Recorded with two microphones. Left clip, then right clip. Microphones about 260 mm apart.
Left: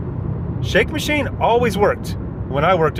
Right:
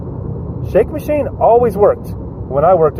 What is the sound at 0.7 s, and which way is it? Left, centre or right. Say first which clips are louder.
Speech: right 4 dB; left.